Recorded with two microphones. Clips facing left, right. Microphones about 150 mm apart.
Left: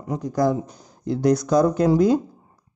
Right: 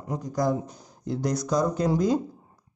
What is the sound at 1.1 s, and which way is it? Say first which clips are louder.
Speech: left 7 dB; 65° left (ahead or behind).